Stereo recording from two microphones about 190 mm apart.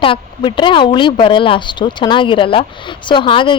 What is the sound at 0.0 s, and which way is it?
A woman's voice, 25° left (ahead or behind).